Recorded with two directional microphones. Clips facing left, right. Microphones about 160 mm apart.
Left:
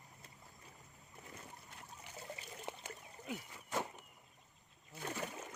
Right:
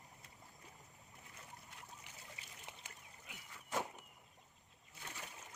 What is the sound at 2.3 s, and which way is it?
Trickle, 40° left (ahead or behind).